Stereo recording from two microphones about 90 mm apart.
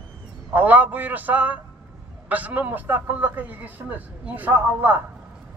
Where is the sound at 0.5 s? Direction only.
20° right (ahead or behind).